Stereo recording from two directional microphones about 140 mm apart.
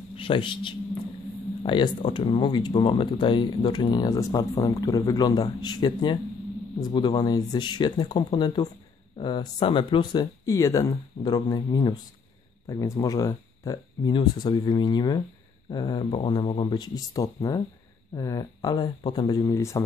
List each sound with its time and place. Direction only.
0.1 s a man's voice: 40° left (ahead or behind)
10.4 s speech: 25° left (ahead or behind)